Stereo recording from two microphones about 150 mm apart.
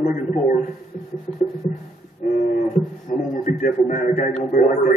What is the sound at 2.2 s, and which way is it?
A man's voice, 65° left (ahead or behind).